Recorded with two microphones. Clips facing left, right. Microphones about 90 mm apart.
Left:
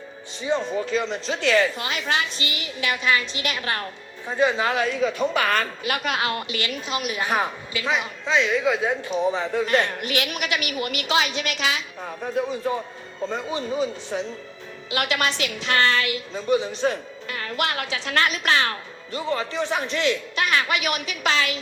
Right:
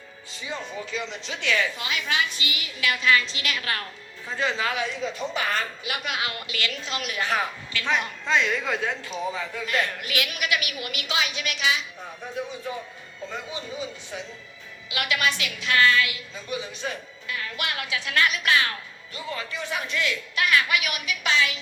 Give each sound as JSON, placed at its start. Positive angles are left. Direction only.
{"t": 0.4, "sound": "a woman's voice", "side_deg": 35}
{"t": 4.6, "sound": "a woman's voice", "side_deg": 40}
{"t": 4.9, "sound": "a woman's voice", "side_deg": 70}
{"t": 6.5, "sound": "a woman's voice", "side_deg": 20}
{"t": 8.8, "sound": "a woman's voice", "side_deg": 20}
{"t": 14.1, "sound": "a man's voice", "side_deg": 45}